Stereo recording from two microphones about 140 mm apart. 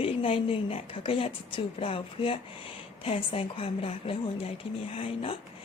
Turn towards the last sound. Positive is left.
turn(degrees=40)  # may be behind; listen again after turning